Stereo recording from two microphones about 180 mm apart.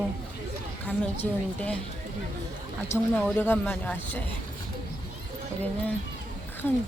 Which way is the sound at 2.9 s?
15° left (ahead or behind).